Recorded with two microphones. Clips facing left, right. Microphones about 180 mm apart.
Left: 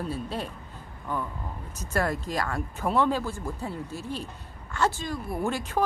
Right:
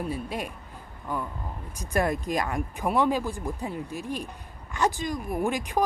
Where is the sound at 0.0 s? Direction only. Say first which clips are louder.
Right 1 dB; 15° right (ahead or behind).